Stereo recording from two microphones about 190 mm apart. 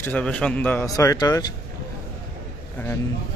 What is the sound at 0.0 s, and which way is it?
Speech, 10° left (ahead or behind).